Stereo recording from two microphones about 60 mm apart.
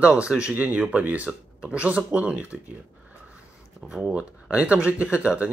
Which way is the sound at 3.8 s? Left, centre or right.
Centre.